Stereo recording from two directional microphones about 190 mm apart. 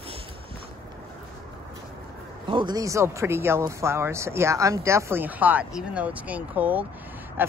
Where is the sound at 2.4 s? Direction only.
25° right (ahead or behind).